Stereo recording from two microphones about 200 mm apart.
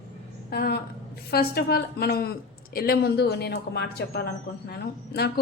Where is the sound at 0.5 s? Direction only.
50° left (ahead or behind).